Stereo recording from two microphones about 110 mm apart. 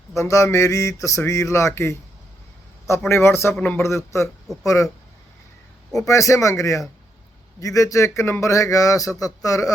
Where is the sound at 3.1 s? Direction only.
20° left (ahead or behind).